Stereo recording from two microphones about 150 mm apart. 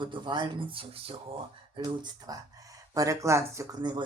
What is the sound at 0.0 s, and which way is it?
Speech, 30° right (ahead or behind).